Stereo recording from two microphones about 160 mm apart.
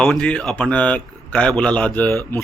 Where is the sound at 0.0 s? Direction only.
5° left (ahead or behind).